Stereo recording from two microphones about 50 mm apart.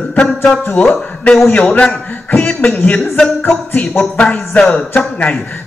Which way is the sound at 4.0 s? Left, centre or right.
Left.